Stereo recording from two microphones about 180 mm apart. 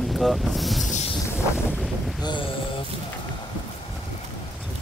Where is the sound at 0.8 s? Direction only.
40° left (ahead or behind).